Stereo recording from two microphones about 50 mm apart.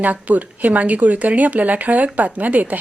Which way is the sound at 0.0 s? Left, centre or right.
Right.